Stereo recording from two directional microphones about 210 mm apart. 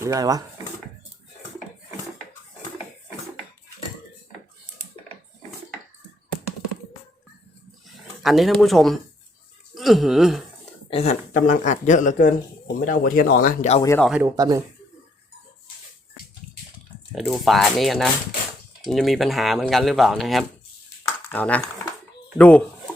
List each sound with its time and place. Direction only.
0.0 s speech: 15° right (ahead or behind)
8.2 s speech: centre (ahead or behind)
10.8 s speech: 30° left (ahead or behind)
14.0 s speech: 5° right (ahead or behind)
14.3 s speech: 20° right (ahead or behind)
17.1 s speech: centre (ahead or behind)
21.0 s a sound: 10° left (ahead or behind)
22.4 s speech: 5° left (ahead or behind)